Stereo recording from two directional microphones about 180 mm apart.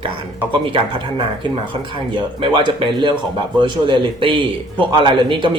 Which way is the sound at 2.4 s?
25° right (ahead or behind).